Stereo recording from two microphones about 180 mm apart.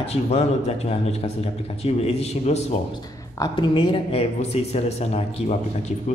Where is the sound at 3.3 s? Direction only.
25° left (ahead or behind).